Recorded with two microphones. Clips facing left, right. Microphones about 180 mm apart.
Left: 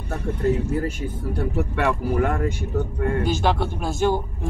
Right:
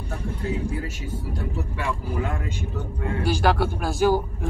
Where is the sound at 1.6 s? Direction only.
65° left (ahead or behind).